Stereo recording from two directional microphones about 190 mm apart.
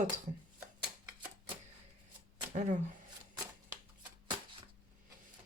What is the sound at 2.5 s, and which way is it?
Speech, 40° right (ahead or behind).